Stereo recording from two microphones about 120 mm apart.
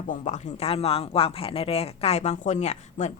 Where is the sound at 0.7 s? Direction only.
55° left (ahead or behind).